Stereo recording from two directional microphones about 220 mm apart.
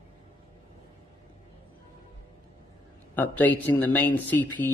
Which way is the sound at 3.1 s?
10° left (ahead or behind).